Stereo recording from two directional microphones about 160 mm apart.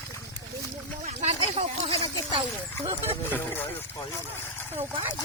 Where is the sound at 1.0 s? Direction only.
40° right (ahead or behind).